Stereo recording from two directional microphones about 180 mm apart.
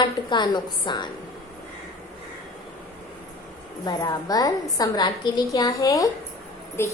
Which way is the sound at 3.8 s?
20° left (ahead or behind).